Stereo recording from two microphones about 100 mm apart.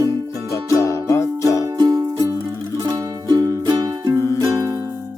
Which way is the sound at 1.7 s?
40° right (ahead or behind).